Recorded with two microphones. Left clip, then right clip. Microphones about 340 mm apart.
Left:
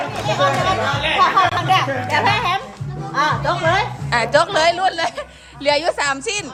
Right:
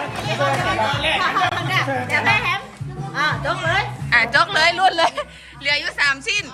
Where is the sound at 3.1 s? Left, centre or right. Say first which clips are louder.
Left 3 dB; left.